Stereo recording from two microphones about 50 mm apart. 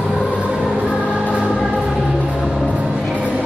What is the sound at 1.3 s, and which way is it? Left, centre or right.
Choir, centre.